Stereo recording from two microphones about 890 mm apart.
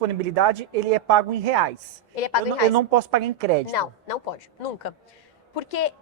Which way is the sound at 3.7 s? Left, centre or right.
Left.